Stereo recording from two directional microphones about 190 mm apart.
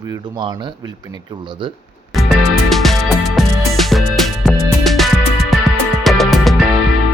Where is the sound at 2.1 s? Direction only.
Centre (ahead or behind).